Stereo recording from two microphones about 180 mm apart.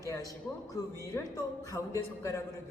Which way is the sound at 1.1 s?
15° left (ahead or behind).